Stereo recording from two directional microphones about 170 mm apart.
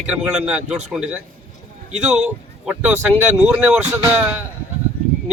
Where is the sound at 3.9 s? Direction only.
15° right (ahead or behind).